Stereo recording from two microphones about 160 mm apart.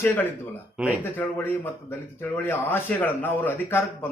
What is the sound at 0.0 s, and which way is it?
A man's voice, 10° left (ahead or behind).